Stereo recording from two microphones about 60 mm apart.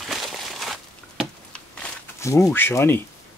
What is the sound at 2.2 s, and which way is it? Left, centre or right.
Speech, left.